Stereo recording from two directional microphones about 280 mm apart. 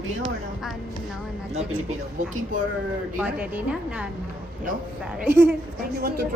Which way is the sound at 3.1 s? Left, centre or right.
Centre.